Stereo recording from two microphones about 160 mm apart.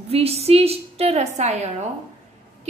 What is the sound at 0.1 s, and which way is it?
A woman's voice, 40° right (ahead or behind).